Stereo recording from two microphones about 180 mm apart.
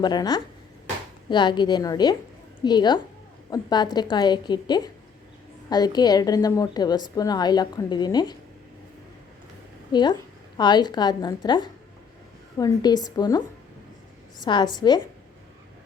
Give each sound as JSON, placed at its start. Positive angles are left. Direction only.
{"t": 0.0, "sound": "a woman's voice", "side_deg": 25}
{"t": 9.9, "sound": "a woman's voice", "side_deg": 25}